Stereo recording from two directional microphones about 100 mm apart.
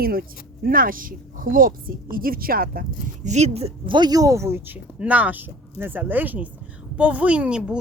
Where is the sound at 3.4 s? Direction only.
90° right.